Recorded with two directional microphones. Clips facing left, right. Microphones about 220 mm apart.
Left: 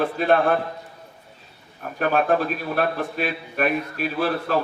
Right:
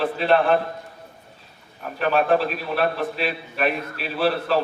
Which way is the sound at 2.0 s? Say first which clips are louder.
Right 1 dB; 45° left (ahead or behind).